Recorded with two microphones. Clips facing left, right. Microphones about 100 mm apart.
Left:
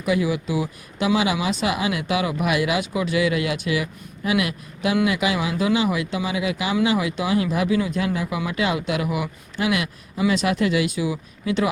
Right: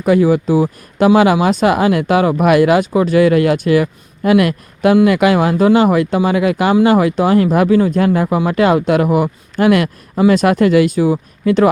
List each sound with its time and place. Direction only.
0.0 s speech: 45° right (ahead or behind)